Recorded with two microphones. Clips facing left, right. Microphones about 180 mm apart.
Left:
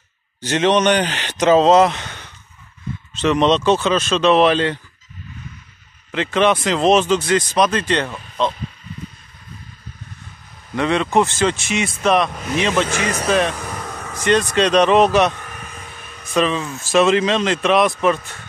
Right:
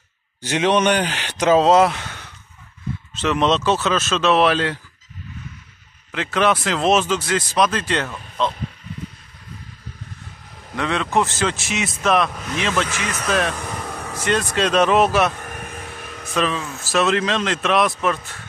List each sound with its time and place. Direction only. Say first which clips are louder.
0.4 s speech: left 2 dB; 10° right (ahead or behind)
6.1 s speech: left 3 dB; 5° right (ahead or behind)
10.8 s speech: left 4 dB; centre (ahead or behind)
12.8 s speech: left 5 dB; 35° left (ahead or behind)
13.3 s speech: left 2 dB; centre (ahead or behind)
15.4 s vehicle: right 3 dB; 55° right (ahead or behind); by 16.3 s 70° right (ahead or behind)
16.3 s speech: left 4 dB; centre (ahead or behind)